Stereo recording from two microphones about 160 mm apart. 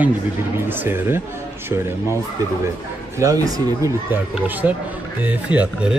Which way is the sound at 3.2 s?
20° right (ahead or behind).